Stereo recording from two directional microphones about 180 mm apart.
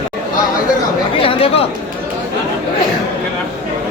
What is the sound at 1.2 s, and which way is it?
Chatter, 30° left (ahead or behind).